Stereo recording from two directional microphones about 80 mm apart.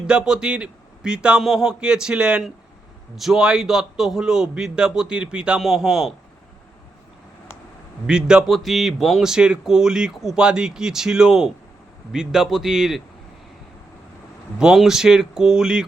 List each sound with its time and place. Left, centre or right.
0.1 s speech: centre
8.0 s speech: centre
8.4 s speech: centre
14.6 s speech: centre